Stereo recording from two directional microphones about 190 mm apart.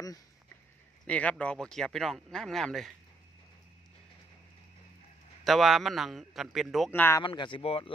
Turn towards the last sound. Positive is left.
turn(degrees=30)  # may be behind; listen again after turning